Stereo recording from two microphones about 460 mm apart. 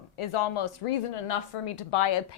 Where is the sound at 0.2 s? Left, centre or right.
Left.